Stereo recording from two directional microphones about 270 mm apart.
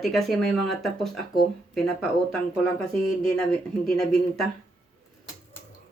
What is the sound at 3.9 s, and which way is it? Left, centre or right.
Speech, centre.